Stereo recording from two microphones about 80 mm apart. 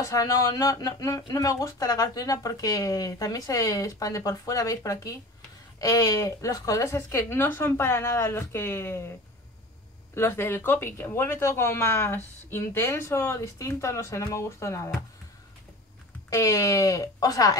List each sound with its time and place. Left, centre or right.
0.0 s speech: left
10.1 s speech: left
16.3 s speech: left